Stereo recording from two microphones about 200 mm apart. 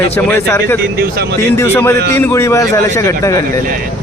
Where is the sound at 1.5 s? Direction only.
10° left (ahead or behind).